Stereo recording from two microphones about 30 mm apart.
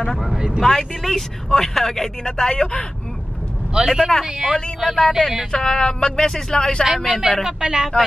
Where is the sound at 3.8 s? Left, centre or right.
Right.